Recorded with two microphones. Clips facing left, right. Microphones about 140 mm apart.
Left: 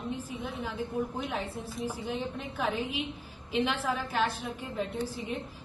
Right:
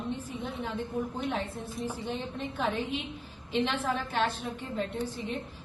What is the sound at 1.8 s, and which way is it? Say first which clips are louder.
A woman's voice: left 1 dB; 5° left (ahead or behind).